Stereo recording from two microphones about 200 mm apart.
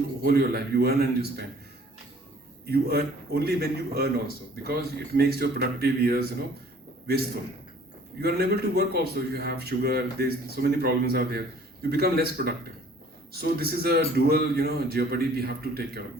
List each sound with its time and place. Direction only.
0.2 s a man's voice: 50° right (ahead or behind)
2.6 s a man's voice: 50° right (ahead or behind)
8.2 s a man's voice: 50° right (ahead or behind)